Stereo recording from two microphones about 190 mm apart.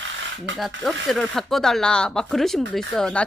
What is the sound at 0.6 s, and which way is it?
Speech, centre (ahead or behind).